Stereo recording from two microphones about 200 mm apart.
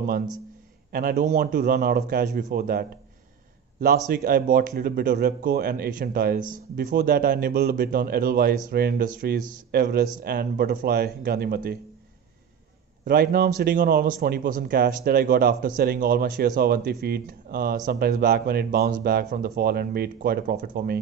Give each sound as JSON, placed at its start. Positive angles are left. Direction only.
{"t": 0.9, "sound": "a man's voice", "side_deg": -40}
{"t": 4.1, "sound": "a man's voice", "side_deg": -45}
{"t": 13.0, "sound": "a man's voice", "side_deg": -45}